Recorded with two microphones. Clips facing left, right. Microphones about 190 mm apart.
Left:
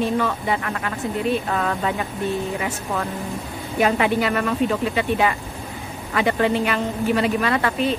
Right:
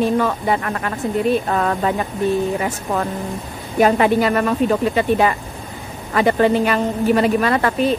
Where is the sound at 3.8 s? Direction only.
40° right (ahead or behind).